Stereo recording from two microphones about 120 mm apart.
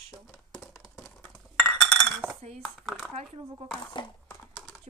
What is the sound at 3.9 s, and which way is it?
Speech, 40° left (ahead or behind).